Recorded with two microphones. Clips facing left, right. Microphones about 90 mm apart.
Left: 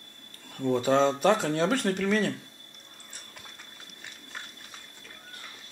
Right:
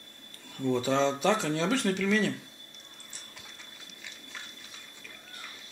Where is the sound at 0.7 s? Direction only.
50° left (ahead or behind).